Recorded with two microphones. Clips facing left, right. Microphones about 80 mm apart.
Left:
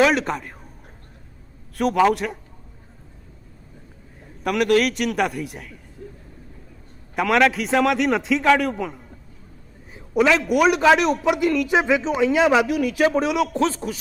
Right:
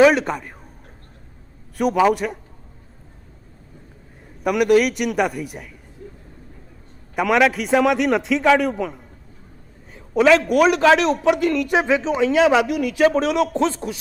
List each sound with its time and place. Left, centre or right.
0.0 s speech: centre
1.8 s speech: centre
4.4 s a man's voice: centre
7.2 s speech: centre
9.9 s a sound: centre
10.5 s speech: centre